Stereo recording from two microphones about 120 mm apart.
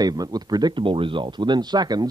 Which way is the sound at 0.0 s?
35° right (ahead or behind).